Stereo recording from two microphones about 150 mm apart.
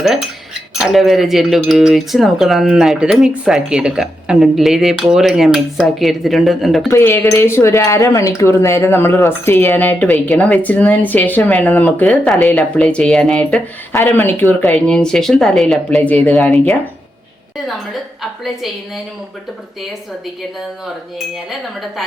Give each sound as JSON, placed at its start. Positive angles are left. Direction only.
{"t": 0.0, "sound": "cutlery", "side_deg": -5}
{"t": 6.9, "sound": "speech", "side_deg": 15}
{"t": 13.9, "sound": "cutlery", "side_deg": 15}